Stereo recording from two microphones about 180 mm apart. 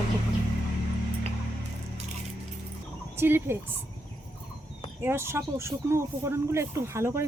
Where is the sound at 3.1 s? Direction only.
10° right (ahead or behind).